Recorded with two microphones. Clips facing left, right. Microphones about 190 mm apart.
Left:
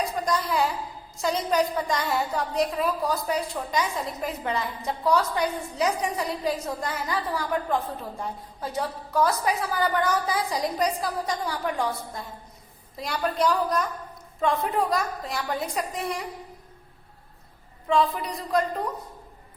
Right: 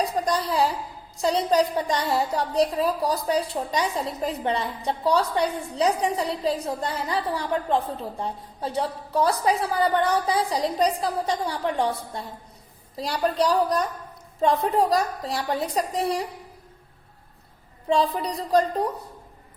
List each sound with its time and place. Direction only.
0.0 s a woman's voice: 35° right (ahead or behind)
17.8 s a woman's voice: 35° right (ahead or behind)